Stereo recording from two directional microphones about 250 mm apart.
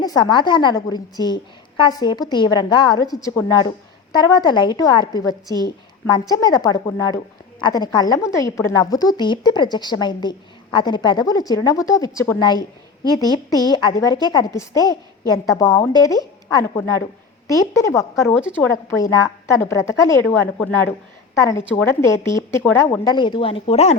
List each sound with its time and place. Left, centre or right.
0.0 s a woman's voice: centre
18.1 s a woman's voice: centre
19.1 s a woman's voice: centre